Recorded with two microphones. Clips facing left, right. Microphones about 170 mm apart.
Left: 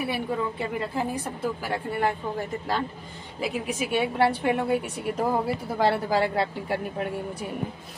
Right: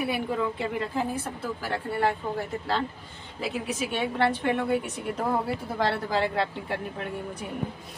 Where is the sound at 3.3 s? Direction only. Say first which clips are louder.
Left 2 dB; 10° left (ahead or behind).